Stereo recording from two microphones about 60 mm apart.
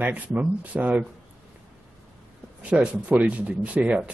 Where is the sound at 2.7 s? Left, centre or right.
Right.